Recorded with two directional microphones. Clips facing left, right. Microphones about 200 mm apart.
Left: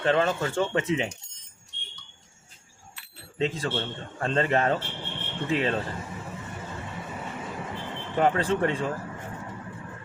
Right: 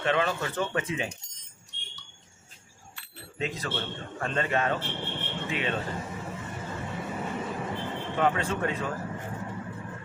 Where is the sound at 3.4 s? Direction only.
30° left (ahead or behind).